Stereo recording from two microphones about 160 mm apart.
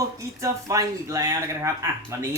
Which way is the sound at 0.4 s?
20° right (ahead or behind).